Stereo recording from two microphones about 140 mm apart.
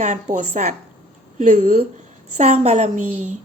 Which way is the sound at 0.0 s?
60° right (ahead or behind).